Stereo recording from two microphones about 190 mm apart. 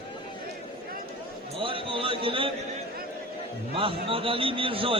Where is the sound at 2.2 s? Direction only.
30° right (ahead or behind).